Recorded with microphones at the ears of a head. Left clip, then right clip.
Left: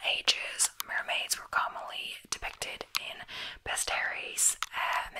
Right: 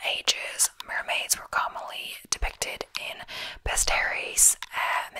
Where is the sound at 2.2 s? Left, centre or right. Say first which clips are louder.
Right 6 dB; right.